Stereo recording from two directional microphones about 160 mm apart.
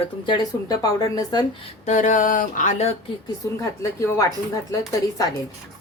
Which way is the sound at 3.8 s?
20° left (ahead or behind).